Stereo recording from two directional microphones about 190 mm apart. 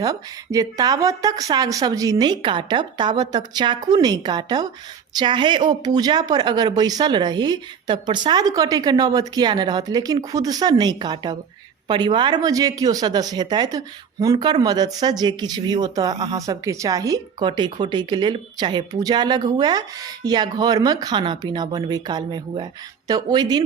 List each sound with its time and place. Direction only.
0.0 s speech: 20° right (ahead or behind)